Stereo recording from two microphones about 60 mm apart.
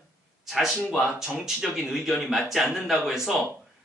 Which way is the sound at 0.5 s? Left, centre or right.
Centre.